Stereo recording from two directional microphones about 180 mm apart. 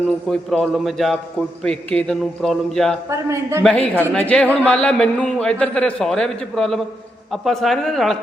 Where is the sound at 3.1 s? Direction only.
15° right (ahead or behind).